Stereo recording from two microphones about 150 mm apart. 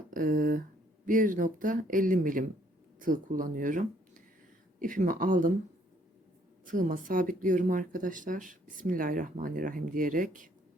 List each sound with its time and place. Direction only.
0.1 s speech: 65° right (ahead or behind)
6.7 s speech: 60° right (ahead or behind)